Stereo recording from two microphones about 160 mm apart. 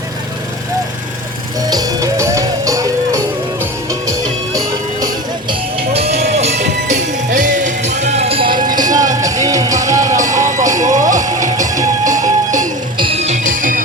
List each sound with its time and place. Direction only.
1.7 s music: 25° right (ahead or behind)
5.5 s music: 35° right (ahead or behind)
7.3 s music: 55° right (ahead or behind); by 10.0 s 20° right (ahead or behind)
10.2 s music: 50° right (ahead or behind)
13.0 s music: 40° right (ahead or behind); by 13.8 s 55° right (ahead or behind)